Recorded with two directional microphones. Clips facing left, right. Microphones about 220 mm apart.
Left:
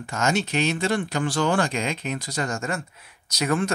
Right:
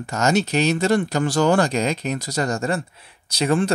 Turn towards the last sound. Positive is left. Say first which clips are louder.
# right 4 dB
turn(degrees=-30)  # may be behind; listen again after turning